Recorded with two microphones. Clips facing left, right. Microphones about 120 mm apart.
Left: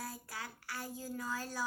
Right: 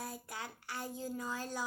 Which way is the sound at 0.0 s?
20° right (ahead or behind).